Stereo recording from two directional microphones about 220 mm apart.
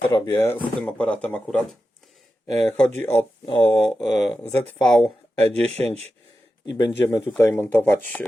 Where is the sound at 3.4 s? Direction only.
20° left (ahead or behind).